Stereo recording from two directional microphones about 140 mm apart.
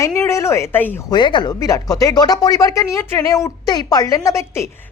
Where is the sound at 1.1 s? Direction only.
35° left (ahead or behind).